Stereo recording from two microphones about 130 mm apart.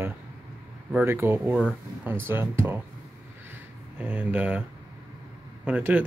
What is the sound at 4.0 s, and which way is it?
Speech, 10° right (ahead or behind).